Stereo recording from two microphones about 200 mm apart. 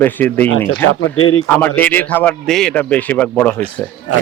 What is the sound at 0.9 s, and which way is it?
Speech, 90° left.